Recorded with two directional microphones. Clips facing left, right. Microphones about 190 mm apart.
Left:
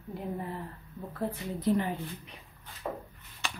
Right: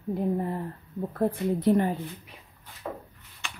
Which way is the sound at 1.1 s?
55° right (ahead or behind).